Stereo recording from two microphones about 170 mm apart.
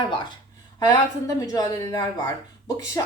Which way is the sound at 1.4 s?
20° left (ahead or behind).